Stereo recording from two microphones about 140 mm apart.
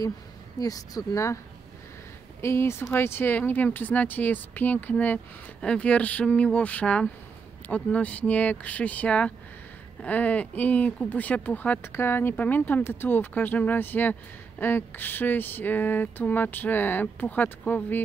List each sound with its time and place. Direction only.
0.6 s speech: 25° left (ahead or behind)
2.4 s speech: 20° left (ahead or behind)